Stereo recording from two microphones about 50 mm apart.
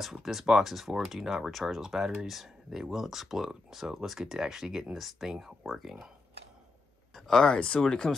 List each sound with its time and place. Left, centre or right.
0.0 s speech: centre
7.2 s speech: centre